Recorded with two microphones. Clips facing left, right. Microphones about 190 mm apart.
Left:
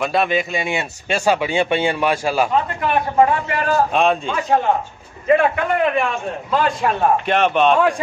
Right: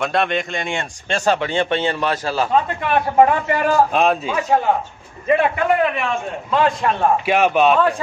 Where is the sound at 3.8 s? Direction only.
Centre (ahead or behind).